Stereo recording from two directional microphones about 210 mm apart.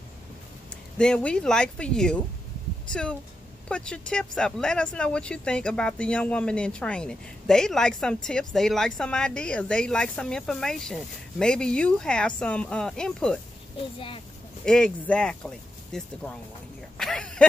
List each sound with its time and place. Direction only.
0.9 s speech: 5° left (ahead or behind)
13.9 s speech: 25° left (ahead or behind)
14.6 s speech: 5° left (ahead or behind)
17.0 s a sound: 5° left (ahead or behind)